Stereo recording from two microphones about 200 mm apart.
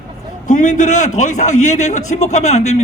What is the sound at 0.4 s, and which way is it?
A man's voice, 40° left (ahead or behind).